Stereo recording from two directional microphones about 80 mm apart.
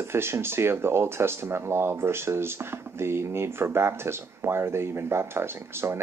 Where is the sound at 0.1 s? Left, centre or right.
Right.